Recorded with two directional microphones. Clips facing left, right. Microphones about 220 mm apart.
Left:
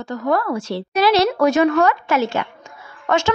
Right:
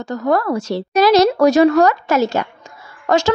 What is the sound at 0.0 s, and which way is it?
A woman's voice, 40° right (ahead or behind).